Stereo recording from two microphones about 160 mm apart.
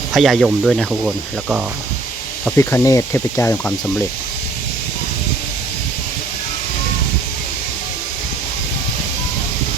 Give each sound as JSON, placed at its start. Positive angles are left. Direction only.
{"t": 0.1, "sound": "speech", "side_deg": 0}
{"t": 2.6, "sound": "speech", "side_deg": 20}